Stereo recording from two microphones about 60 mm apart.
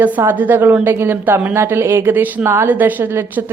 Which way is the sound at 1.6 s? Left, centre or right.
Right.